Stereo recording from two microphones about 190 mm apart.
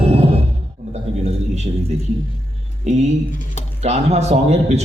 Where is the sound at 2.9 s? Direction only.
35° right (ahead or behind).